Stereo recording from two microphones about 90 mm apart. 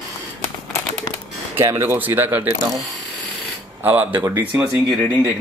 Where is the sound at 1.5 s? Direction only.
30° right (ahead or behind).